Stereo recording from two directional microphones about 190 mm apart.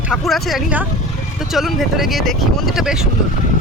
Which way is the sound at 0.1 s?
Centre (ahead or behind).